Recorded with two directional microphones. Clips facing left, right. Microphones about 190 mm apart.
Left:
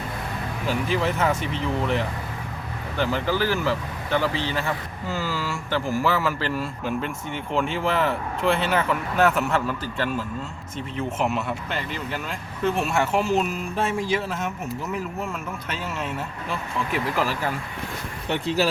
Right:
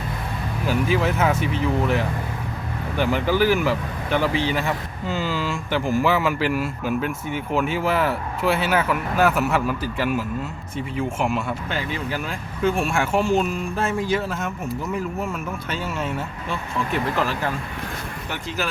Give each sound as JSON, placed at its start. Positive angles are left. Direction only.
{"t": 0.7, "sound": "speech", "side_deg": -5}
{"t": 3.0, "sound": "speech", "side_deg": -15}
{"t": 18.3, "sound": "speech", "side_deg": 35}